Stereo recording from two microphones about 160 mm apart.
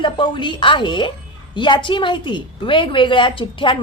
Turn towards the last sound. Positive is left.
turn(degrees=30)  # may be behind; listen again after turning